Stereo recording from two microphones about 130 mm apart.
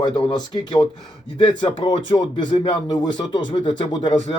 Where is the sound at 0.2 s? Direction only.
35° left (ahead or behind).